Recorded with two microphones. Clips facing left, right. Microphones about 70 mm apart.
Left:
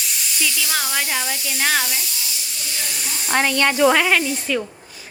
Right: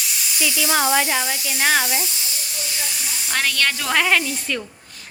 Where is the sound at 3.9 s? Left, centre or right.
Centre.